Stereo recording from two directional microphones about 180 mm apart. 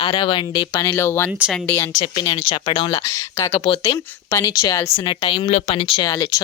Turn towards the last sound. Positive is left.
turn(degrees=20)  # may be behind; listen again after turning